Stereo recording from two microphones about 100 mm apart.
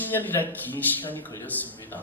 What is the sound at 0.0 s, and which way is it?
Speech, 20° left (ahead or behind).